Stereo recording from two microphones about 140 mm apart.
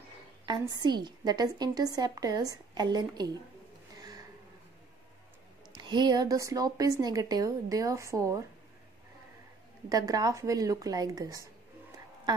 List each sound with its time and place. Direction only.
0.5 s a woman's voice: 30° right (ahead or behind)
5.7 s a woman's voice: 30° right (ahead or behind)
9.8 s a woman's voice: 25° right (ahead or behind)